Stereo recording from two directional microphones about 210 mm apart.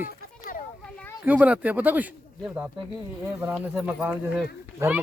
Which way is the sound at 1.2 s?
5° right (ahead or behind).